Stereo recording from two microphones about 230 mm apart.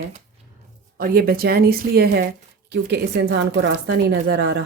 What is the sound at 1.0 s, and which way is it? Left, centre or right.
Speech, right.